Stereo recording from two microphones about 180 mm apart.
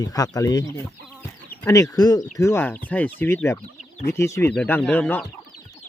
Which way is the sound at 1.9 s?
20° left (ahead or behind).